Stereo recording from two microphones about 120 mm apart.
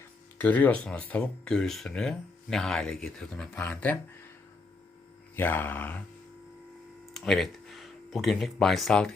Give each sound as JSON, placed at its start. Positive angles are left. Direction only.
{"t": 0.3, "sound": "speech", "side_deg": 15}
{"t": 5.4, "sound": "speech", "side_deg": 15}
{"t": 7.1, "sound": "speech", "side_deg": 5}